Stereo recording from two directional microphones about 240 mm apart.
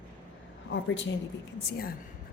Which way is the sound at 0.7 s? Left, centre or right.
Left.